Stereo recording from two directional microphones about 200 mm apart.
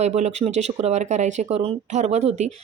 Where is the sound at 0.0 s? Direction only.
35° right (ahead or behind).